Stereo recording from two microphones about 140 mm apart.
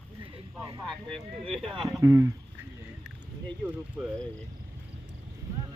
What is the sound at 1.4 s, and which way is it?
Speech, 40° right (ahead or behind).